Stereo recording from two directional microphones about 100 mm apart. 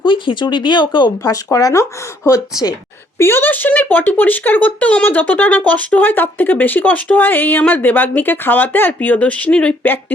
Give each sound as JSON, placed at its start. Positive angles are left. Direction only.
{"t": 0.0, "sound": "speech", "side_deg": 50}
{"t": 1.2, "sound": "speech", "side_deg": 35}
{"t": 3.2, "sound": "speech", "side_deg": 25}